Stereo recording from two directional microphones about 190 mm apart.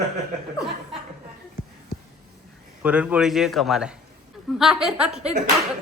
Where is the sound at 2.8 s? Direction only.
5° right (ahead or behind).